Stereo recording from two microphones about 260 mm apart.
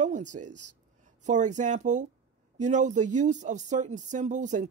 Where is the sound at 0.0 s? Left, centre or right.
Right.